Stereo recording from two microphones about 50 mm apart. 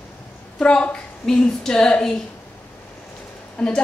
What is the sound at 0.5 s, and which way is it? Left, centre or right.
Speech, left.